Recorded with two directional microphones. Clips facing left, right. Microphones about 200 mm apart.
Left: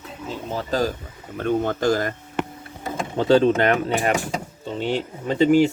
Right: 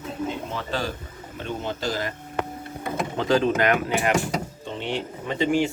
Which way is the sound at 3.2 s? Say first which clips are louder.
Left 5 dB; 30° left (ahead or behind).